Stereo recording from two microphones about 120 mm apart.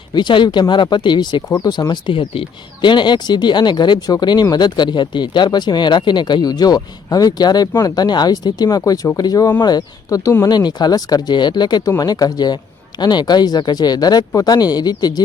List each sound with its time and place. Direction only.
0.1 s speech: 40° left (ahead or behind)